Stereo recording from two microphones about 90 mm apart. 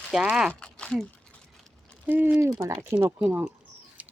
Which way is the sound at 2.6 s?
35° right (ahead or behind).